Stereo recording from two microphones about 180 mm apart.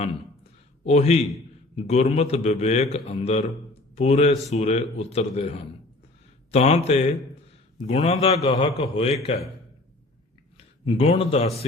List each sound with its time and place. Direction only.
0.9 s a man's voice: 35° left (ahead or behind)
10.8 s a man's voice: 35° left (ahead or behind)